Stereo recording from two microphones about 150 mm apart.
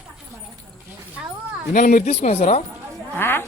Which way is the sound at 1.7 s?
60° left (ahead or behind).